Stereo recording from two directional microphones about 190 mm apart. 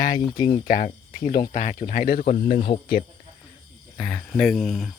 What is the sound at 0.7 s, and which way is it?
Speech, 40° left (ahead or behind).